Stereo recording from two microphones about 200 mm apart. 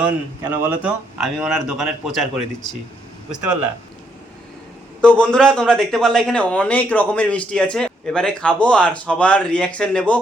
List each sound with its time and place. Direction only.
0.6 s a man's voice: 5° right (ahead or behind)
3.4 s a man's voice: 5° right (ahead or behind)
4.9 s a man's voice: 5° left (ahead or behind)